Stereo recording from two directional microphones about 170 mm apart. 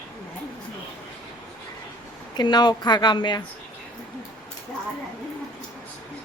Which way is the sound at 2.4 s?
25° left (ahead or behind).